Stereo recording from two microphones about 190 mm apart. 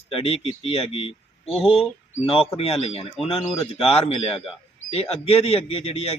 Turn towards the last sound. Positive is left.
turn(degrees=30)  # may be behind; listen again after turning